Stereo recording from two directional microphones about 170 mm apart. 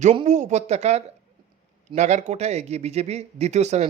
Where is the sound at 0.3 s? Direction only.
45° right (ahead or behind).